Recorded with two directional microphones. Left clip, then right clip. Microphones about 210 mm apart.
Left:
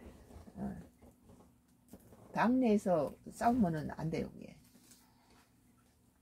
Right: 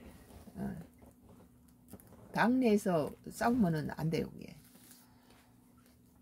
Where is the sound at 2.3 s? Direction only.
30° right (ahead or behind).